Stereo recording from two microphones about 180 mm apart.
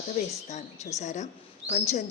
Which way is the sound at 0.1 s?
40° left (ahead or behind).